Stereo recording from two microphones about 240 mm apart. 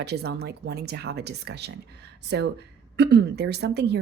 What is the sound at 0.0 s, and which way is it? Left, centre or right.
Speech, right.